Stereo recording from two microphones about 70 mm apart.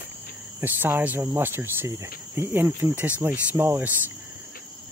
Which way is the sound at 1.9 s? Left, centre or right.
Right.